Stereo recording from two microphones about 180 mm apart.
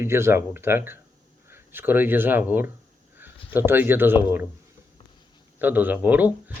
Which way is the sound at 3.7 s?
10° right (ahead or behind).